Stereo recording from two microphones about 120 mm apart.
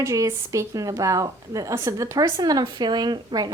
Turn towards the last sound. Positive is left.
turn(degrees=-35)  # may be behind; listen again after turning